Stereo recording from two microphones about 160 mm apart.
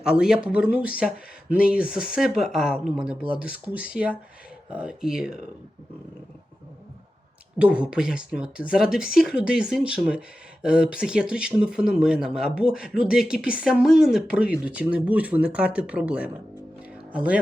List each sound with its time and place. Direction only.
0.0 s speech: 5° right (ahead or behind)
7.6 s speech: 5° right (ahead or behind)